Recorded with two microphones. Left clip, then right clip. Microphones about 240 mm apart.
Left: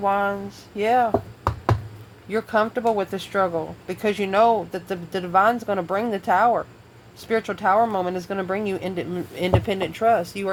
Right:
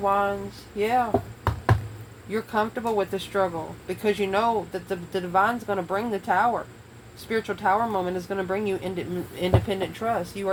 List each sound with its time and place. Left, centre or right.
0.0 s speech: left
2.3 s speech: left